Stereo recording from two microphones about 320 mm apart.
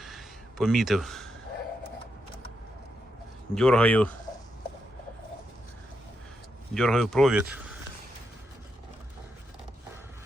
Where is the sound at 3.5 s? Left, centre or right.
Centre.